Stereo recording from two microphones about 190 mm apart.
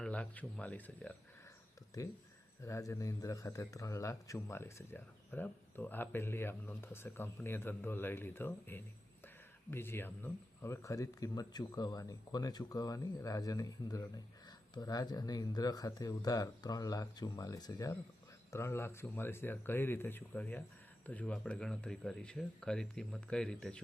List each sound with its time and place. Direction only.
0.0 s a man's voice: 5° left (ahead or behind)